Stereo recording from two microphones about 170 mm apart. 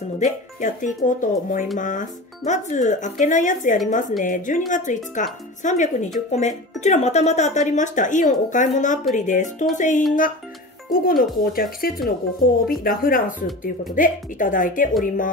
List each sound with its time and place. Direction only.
0.2 s speech: 50° left (ahead or behind)
10.9 s speech: 60° left (ahead or behind)